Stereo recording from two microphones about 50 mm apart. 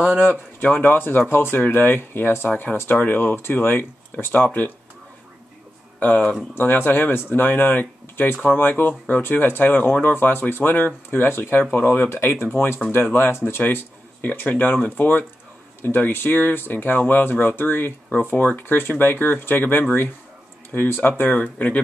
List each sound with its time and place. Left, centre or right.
0.2 s speech: left
0.9 s speech: left
1.3 s speech: left
5.9 s speech: left
11.7 s speech: left
12.1 s speech: left
15.8 s speech: left
18.1 s speech: left
18.6 s speech: left
21.2 s speech: left